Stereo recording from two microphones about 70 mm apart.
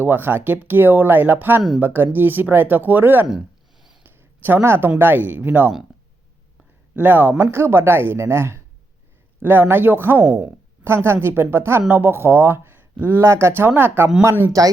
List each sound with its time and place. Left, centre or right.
0.0 s speech: right
3.2 s a sound: centre
4.0 s a sound: right
4.9 s speech: right
6.9 s speech: right
13.2 s speech: right
14.6 s speech: right